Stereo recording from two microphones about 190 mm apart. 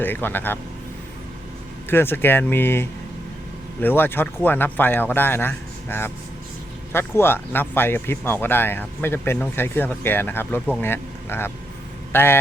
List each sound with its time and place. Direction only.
0.0 s speech: 10° left (ahead or behind)
1.9 s speech: 10° left (ahead or behind)